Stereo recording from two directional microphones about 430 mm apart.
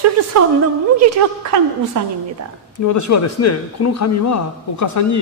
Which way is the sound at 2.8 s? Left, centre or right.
Left.